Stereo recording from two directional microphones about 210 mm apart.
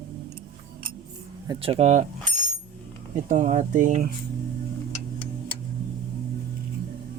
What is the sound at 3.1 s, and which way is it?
Speech, 35° right (ahead or behind).